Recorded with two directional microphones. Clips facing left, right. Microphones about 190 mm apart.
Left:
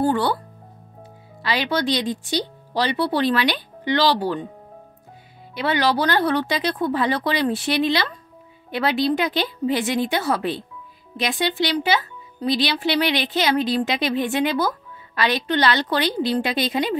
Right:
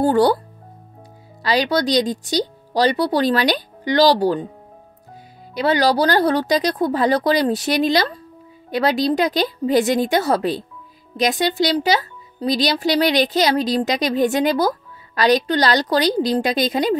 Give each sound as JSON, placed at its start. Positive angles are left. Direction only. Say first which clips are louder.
{"t": 0.0, "sound": "speech", "louder": "right 5 dB", "side_deg": -40}
{"t": 1.4, "sound": "speech", "louder": "right 4 dB", "side_deg": -40}
{"t": 5.5, "sound": "speech", "louder": "right 4 dB", "side_deg": -40}